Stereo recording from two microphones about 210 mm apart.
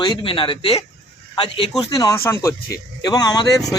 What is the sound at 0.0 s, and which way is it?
A man's voice, 20° left (ahead or behind).